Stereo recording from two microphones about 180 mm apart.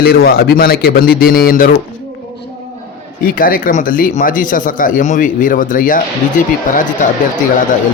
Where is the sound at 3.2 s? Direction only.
50° left (ahead or behind).